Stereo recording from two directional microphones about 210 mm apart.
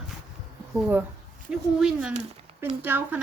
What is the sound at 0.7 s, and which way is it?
A woman's voice, 5° right (ahead or behind).